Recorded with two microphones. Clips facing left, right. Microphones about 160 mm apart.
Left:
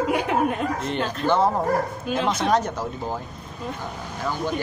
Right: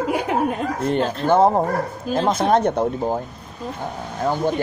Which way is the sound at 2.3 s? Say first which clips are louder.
Right 5 dB; 55° right (ahead or behind).